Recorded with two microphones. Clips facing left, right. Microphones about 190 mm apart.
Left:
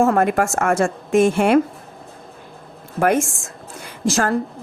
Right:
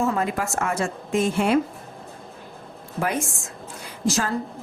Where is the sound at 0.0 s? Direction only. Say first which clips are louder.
Left 7 dB; 55° left (ahead or behind).